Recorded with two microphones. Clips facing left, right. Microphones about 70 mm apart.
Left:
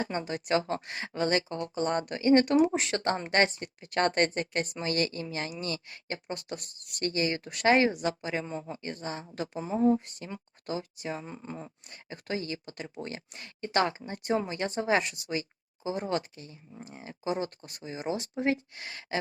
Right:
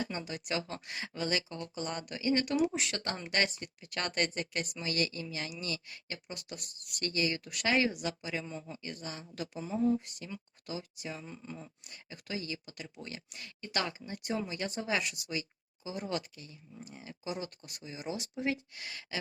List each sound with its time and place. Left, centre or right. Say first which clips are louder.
0.0 s speech: left 6 dB; left